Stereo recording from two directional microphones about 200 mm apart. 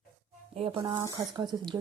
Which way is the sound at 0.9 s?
15° right (ahead or behind).